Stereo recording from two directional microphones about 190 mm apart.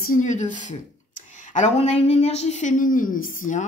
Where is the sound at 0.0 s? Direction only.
45° left (ahead or behind).